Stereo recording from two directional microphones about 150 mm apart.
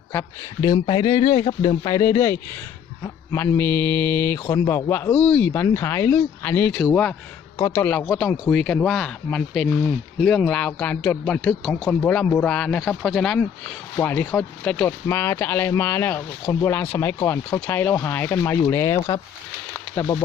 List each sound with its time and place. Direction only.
0.1 s speech: 15° left (ahead or behind)
20.0 s speech: 25° left (ahead or behind)